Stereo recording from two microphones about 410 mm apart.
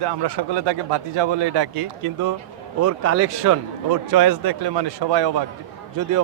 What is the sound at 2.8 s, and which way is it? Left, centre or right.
Speech, right.